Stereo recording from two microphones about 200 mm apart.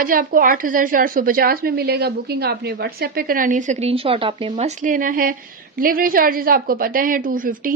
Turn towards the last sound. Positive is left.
turn(degrees=-45)  # may be behind; listen again after turning